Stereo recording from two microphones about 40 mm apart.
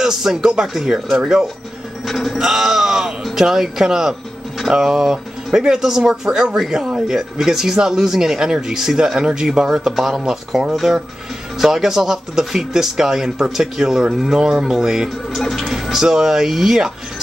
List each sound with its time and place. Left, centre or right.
0.0 s speech: centre
2.0 s music: centre
2.3 s speech: centre
9.8 s music: centre
10.2 s speech: centre
10.7 s music: centre
11.5 s speech: centre
15.3 s music: centre
15.7 s speech: centre